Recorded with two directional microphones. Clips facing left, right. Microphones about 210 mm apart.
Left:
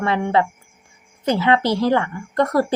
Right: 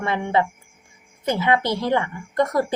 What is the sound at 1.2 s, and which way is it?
A woman's voice, 20° right (ahead or behind).